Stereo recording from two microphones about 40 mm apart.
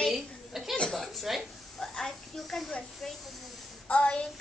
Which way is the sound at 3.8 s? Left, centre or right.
Left.